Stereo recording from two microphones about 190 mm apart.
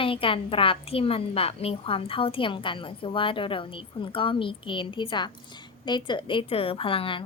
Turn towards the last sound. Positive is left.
turn(degrees=25)  # may be behind; listen again after turning